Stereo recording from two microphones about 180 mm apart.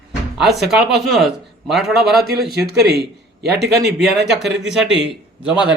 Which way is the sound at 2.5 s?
65° right (ahead or behind).